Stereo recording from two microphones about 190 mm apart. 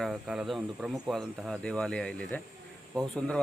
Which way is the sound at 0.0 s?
Centre (ahead or behind).